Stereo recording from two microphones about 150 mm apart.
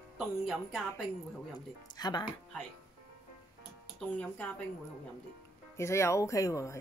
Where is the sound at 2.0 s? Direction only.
30° left (ahead or behind).